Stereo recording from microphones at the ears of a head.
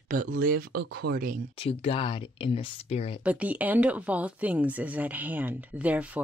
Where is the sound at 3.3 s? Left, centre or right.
Centre.